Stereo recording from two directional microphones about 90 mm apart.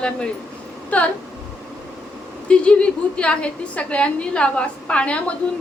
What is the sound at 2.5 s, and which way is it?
A woman's voice, 10° left (ahead or behind).